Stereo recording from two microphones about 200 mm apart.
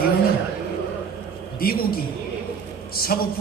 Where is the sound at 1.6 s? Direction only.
50° left (ahead or behind).